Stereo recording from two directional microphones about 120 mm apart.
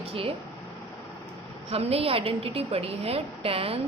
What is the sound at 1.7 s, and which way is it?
A woman's voice, 55° right (ahead or behind).